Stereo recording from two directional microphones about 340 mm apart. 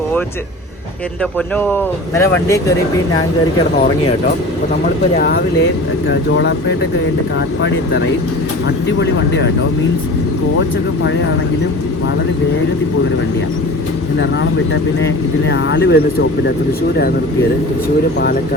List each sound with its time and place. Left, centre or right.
1.5 s speech: centre
5.1 s speech: left
15.4 s speech: left